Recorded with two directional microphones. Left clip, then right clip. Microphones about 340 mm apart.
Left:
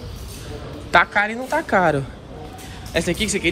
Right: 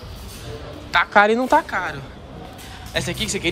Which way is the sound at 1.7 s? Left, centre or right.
Centre.